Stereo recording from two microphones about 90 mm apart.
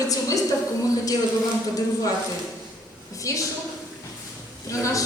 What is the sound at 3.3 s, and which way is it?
Speech, 35° left (ahead or behind).